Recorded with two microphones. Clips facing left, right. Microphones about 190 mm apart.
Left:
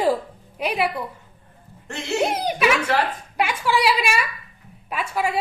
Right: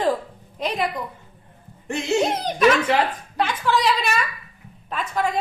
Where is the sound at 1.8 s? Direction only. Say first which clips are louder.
Right 4 dB; 15° right (ahead or behind).